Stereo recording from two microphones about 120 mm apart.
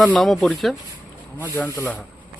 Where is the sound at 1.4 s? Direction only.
15° left (ahead or behind).